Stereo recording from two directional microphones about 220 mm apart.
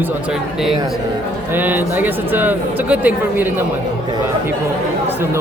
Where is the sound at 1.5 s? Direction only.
10° right (ahead or behind).